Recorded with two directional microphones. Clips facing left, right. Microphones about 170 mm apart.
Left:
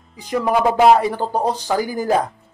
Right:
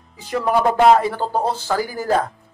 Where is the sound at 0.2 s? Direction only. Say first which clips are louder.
Left 1 dB; 15° left (ahead or behind).